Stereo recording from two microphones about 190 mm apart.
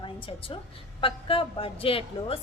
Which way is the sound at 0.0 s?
25° left (ahead or behind).